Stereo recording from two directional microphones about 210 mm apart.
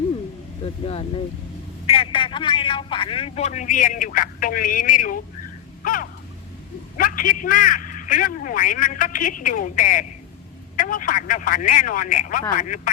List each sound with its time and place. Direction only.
0.9 s a man's voice: 30° left (ahead or behind)
5.8 s a sound: 40° left (ahead or behind)
6.9 s a man's voice: 40° left (ahead or behind)